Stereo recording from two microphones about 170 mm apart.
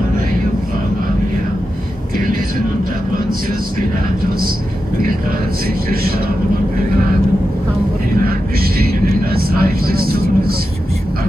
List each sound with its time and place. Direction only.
8.2 s vehicle: 60° right (ahead or behind)